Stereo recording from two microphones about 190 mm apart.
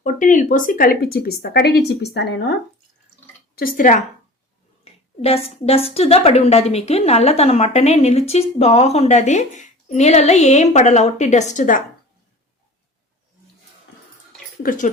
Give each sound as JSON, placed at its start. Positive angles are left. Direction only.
{"t": 0.0, "sound": "a woman's voice", "side_deg": 40}
{"t": 3.5, "sound": "speech", "side_deg": 50}
{"t": 4.8, "sound": "a woman's voice", "side_deg": 30}
{"t": 14.6, "sound": "speech", "side_deg": 45}